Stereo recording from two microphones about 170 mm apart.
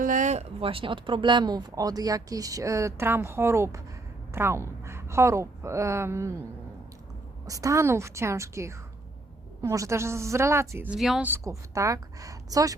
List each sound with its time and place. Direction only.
0.0 s speech: 50° right (ahead or behind); by 6.3 s 15° right (ahead or behind)
7.4 s speech: 20° right (ahead or behind)
10.9 s speech: 5° right (ahead or behind); by 12.7 s 20° right (ahead or behind)